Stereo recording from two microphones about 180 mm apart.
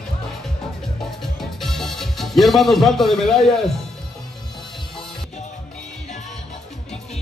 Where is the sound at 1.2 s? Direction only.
Centre (ahead or behind).